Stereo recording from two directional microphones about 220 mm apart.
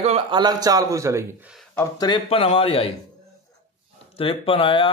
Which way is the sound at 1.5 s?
5° left (ahead or behind).